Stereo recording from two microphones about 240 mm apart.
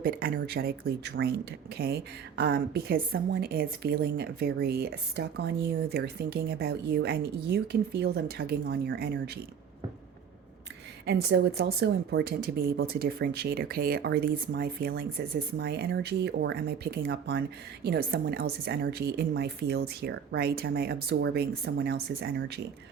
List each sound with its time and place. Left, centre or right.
0.0 s a woman's voice: right
11.0 s a woman's voice: right